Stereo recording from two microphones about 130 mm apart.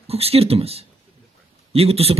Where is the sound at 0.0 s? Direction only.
50° right (ahead or behind).